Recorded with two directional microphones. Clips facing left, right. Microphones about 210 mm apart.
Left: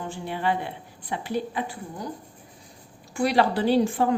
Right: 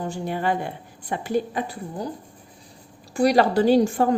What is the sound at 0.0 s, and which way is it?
A woman's voice, 40° right (ahead or behind).